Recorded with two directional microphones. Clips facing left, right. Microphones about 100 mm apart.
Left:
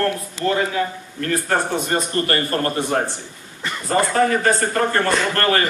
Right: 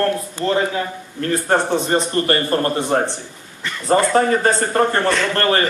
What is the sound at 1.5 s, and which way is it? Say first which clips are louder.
A man's voice: right 5 dB; 25° right (ahead or behind).